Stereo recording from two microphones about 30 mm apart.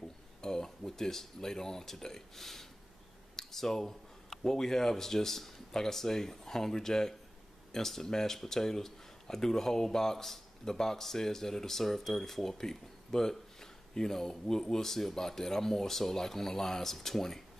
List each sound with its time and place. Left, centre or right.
0.4 s speech: centre
3.3 s a sound: centre
4.5 s speech: centre